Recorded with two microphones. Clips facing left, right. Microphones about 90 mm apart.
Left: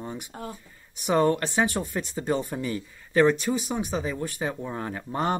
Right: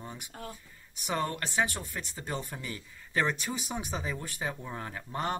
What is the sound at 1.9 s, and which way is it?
Speech, 25° left (ahead or behind).